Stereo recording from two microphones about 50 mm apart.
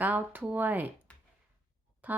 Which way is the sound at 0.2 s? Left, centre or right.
Right.